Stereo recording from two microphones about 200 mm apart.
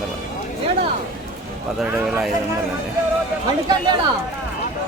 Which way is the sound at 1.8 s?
5° right (ahead or behind).